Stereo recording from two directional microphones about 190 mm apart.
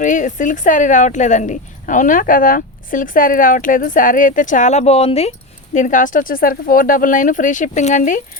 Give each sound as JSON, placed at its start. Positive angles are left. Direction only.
{"t": 0.0, "sound": "speech", "side_deg": 40}